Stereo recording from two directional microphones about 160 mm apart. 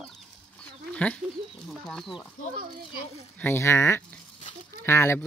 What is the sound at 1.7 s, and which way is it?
Speech, centre (ahead or behind).